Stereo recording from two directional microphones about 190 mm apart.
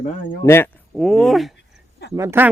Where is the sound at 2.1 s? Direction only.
15° right (ahead or behind).